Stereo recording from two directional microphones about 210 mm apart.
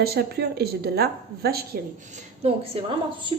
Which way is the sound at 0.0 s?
50° right (ahead or behind).